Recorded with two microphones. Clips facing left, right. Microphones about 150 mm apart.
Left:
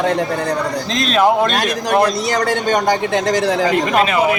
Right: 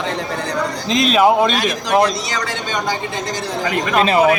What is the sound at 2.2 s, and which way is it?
A man's voice, 50° left (ahead or behind).